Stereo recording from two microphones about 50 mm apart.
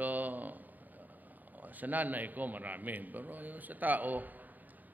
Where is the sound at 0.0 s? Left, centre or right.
Right.